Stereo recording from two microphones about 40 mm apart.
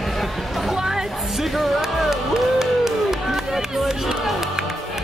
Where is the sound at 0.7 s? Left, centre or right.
Centre.